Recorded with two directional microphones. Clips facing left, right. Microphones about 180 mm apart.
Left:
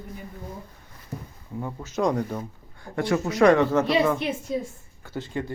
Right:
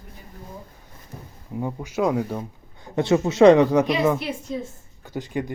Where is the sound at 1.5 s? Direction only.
15° right (ahead or behind).